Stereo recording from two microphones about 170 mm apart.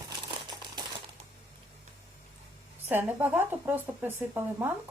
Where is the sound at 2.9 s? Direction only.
10° right (ahead or behind).